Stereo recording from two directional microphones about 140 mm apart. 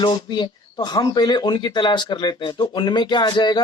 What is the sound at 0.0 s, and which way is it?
Speech, 35° left (ahead or behind).